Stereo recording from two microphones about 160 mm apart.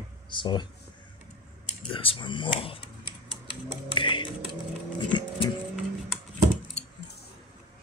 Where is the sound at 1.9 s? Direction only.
35° left (ahead or behind).